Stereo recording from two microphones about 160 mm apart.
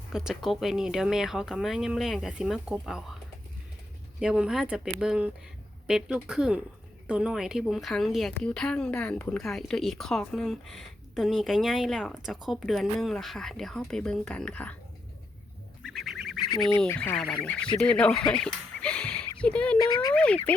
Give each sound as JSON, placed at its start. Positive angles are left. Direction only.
{"t": 0.1, "sound": "speech", "side_deg": 0}
{"t": 4.2, "sound": "speech", "side_deg": -5}
{"t": 15.8, "sound": "goose", "side_deg": 0}
{"t": 16.4, "sound": "duck", "side_deg": 25}
{"t": 16.7, "sound": "speech", "side_deg": 10}
{"t": 18.3, "sound": "a sound", "side_deg": 5}
{"t": 19.8, "sound": "speech", "side_deg": 25}
{"t": 20.1, "sound": "speech", "side_deg": 10}